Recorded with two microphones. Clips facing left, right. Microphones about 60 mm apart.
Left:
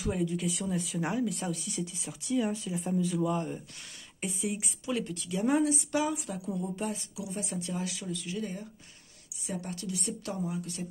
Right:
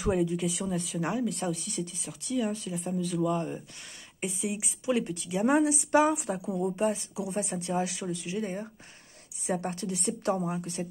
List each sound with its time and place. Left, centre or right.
0.1 s speech: centre
0.5 s speech: centre
1.9 s speech: centre
4.8 s speech: centre
5.9 s a woman's voice: right